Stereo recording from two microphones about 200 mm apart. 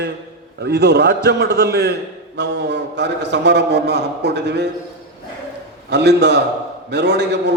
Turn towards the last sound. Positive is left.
turn(degrees=-60)  # may be behind; listen again after turning